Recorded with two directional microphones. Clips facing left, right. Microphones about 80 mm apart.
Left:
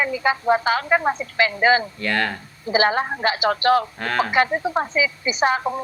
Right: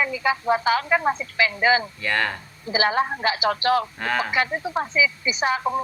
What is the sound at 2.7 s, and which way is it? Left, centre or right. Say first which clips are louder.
A woman's voice: left 2 dB; left.